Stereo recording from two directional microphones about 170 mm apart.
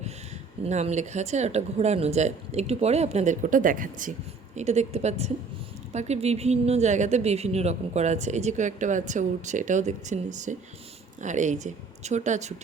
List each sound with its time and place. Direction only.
0.6 s a woman's voice: 40° right (ahead or behind)